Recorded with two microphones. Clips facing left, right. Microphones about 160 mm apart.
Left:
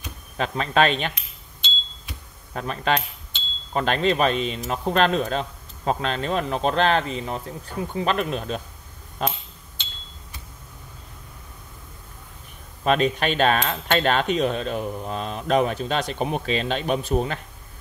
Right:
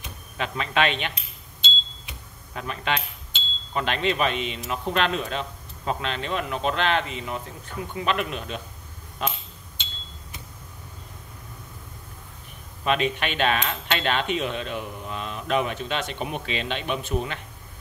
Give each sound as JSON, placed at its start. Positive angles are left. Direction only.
{"t": 0.4, "sound": "speech", "side_deg": 40}
{"t": 2.5, "sound": "speech", "side_deg": 40}
{"t": 12.8, "sound": "speech", "side_deg": 40}